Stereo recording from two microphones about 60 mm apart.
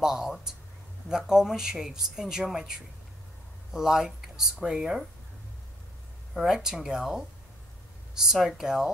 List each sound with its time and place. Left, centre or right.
0.0 s speech: centre
3.7 s speech: centre
6.3 s speech: centre